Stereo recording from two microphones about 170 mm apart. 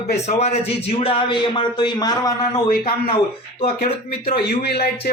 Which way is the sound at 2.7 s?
60° left (ahead or behind).